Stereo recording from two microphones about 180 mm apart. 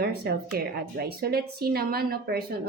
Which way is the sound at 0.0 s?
60° right (ahead or behind).